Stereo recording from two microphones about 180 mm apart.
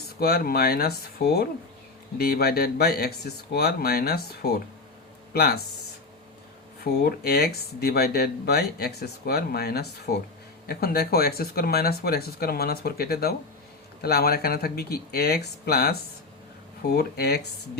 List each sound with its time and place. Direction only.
0.2 s speech: 55° left (ahead or behind)
6.8 s speech: 60° left (ahead or behind)